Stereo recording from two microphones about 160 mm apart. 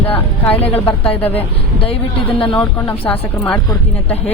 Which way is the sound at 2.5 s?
15° left (ahead or behind).